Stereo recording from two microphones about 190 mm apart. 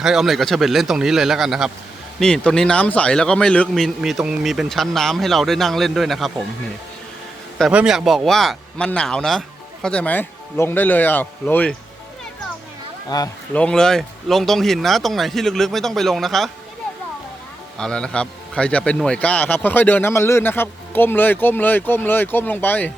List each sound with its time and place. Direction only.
0.0 s a man's voice: centre (ahead or behind)
7.6 s a man's voice: 5° right (ahead or behind)
13.1 s speech: 20° left (ahead or behind)
13.5 s a man's voice: 5° left (ahead or behind)
17.7 s a man's voice: 5° left (ahead or behind)